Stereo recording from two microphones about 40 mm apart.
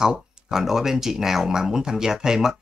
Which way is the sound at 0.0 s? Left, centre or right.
Centre.